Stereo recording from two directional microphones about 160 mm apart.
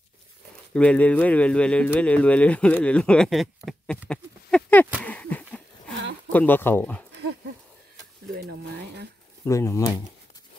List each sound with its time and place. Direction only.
0.7 s speech: 10° left (ahead or behind)
4.1 s a sound: 5° left (ahead or behind)
6.3 s speech: 10° left (ahead or behind)
9.4 s speech: 20° left (ahead or behind)